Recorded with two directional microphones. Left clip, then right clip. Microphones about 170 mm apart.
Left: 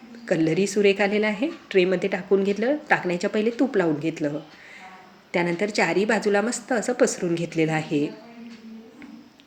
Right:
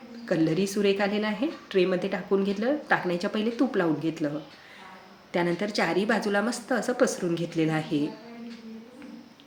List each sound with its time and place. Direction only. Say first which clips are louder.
0.3 s a woman's voice: left 3 dB; 20° left (ahead or behind)
5.3 s a woman's voice: left 3 dB; 15° left (ahead or behind)